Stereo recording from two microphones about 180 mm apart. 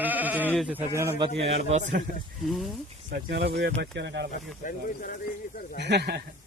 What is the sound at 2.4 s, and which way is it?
Speech, centre (ahead or behind).